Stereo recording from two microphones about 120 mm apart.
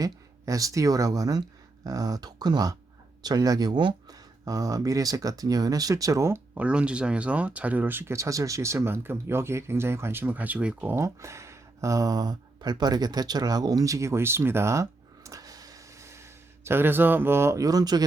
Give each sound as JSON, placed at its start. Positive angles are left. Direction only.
{"t": 0.0, "sound": "speech", "side_deg": -30}
{"t": 6.6, "sound": "speech", "side_deg": -10}
{"t": 10.9, "sound": "speech", "side_deg": -25}